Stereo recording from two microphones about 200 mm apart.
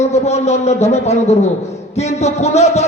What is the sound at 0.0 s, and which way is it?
A man's voice, 35° left (ahead or behind).